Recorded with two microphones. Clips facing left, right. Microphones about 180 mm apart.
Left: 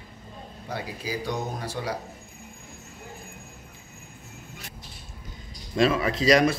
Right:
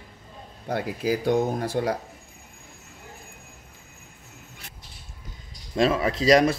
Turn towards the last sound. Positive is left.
turn(degrees=-35)  # may be behind; listen again after turning